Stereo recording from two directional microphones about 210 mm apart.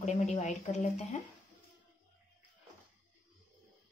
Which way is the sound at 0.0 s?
35° left (ahead or behind).